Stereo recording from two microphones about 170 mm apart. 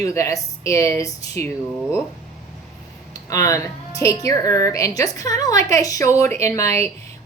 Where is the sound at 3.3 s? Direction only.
20° left (ahead or behind).